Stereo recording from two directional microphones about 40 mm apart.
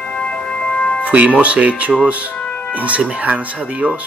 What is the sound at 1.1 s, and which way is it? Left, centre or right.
Speech, right.